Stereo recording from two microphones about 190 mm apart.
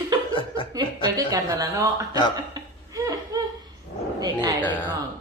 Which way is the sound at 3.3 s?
20° right (ahead or behind).